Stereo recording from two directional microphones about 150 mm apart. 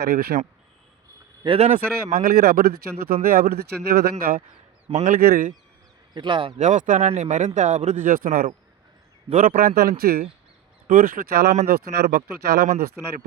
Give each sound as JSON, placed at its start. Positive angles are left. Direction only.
{"t": 0.0, "sound": "speech", "side_deg": -90}
{"t": 1.5, "sound": "a man's voice", "side_deg": -45}
{"t": 1.7, "sound": "speech", "side_deg": -70}
{"t": 3.1, "sound": "speech", "side_deg": -75}
{"t": 4.2, "sound": "speech", "side_deg": -75}
{"t": 4.9, "sound": "a man's voice", "side_deg": -50}
{"t": 5.1, "sound": "speech", "side_deg": -75}
{"t": 6.1, "sound": "speech", "side_deg": -35}
{"t": 6.6, "sound": "speech", "side_deg": -55}
{"t": 9.3, "sound": "a man's voice", "side_deg": -50}
{"t": 9.6, "sound": "speech", "side_deg": -80}
{"t": 10.8, "sound": "speech", "side_deg": -65}